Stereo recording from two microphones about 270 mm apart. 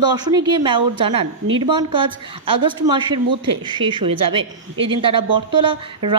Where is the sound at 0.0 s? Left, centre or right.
Centre.